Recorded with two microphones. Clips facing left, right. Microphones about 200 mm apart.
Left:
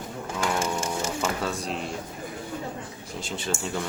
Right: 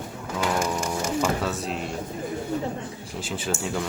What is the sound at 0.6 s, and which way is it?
Music, 25° left (ahead or behind).